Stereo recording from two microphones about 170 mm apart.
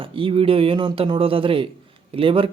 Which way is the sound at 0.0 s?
30° right (ahead or behind).